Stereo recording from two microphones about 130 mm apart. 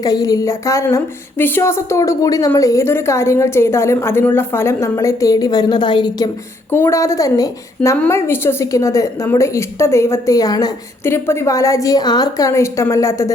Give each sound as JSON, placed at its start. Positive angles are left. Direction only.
{"t": 0.0, "sound": "a woman's voice", "side_deg": 30}
{"t": 6.7, "sound": "a woman's voice", "side_deg": 15}